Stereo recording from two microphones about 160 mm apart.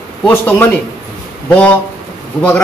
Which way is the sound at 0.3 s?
15° left (ahead or behind).